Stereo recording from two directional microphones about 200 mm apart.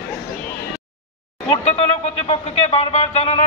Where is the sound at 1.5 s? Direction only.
30° left (ahead or behind).